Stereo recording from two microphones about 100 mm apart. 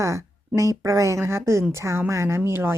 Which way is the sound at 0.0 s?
30° right (ahead or behind).